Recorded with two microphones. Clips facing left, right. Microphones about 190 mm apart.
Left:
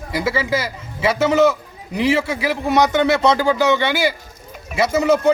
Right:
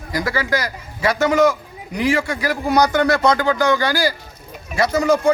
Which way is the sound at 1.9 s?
25° left (ahead or behind).